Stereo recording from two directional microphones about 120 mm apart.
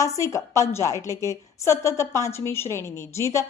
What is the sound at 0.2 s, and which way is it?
A woman's voice, 25° left (ahead or behind).